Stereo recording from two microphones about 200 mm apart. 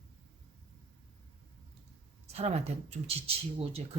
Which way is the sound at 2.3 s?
30° right (ahead or behind).